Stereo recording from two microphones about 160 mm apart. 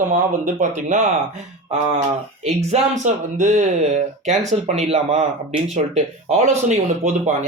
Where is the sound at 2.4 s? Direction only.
45° right (ahead or behind).